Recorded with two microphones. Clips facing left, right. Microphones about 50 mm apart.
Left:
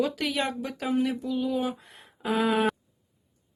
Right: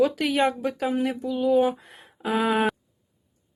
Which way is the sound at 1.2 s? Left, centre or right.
Right.